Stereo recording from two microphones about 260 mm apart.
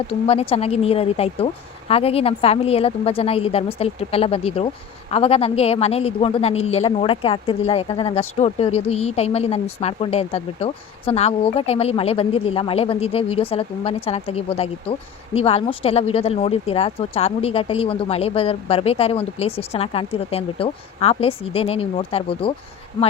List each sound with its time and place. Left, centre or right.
0.1 s speech: left